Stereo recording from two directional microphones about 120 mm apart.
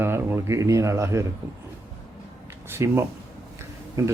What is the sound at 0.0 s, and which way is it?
Speech, 20° right (ahead or behind).